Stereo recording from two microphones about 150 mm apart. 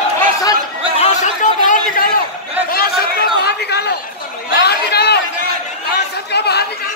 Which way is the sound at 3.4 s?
90° left.